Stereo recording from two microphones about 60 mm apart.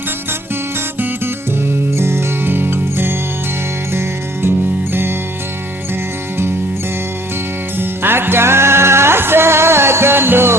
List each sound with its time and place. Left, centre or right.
0.9 s music: right
2.0 s music: right
7.8 s music: right